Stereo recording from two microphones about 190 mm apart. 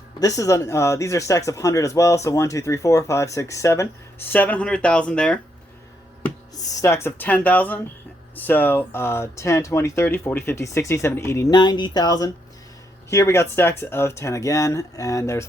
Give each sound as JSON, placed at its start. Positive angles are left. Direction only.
{"t": 0.2, "sound": "speech", "side_deg": 20}
{"t": 6.6, "sound": "speech", "side_deg": 15}